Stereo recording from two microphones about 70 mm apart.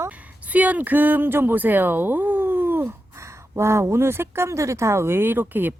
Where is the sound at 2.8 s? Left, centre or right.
Right.